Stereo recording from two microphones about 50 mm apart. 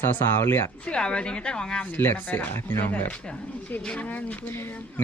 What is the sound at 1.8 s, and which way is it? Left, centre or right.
Speech, left.